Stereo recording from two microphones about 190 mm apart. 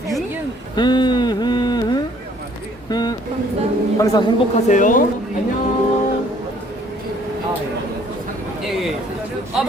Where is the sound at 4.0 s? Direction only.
20° left (ahead or behind).